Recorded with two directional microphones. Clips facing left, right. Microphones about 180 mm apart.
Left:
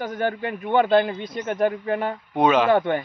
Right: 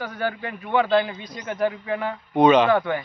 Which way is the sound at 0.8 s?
40° left (ahead or behind).